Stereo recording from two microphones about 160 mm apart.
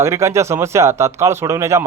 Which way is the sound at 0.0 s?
15° right (ahead or behind).